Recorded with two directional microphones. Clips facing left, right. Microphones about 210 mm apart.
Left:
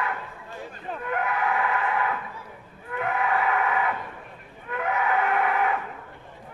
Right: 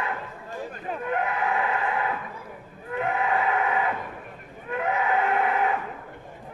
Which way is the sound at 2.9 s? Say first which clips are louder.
Right 1 dB; 30° right (ahead or behind).